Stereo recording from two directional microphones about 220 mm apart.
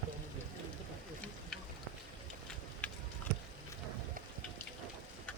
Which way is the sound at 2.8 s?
5° left (ahead or behind).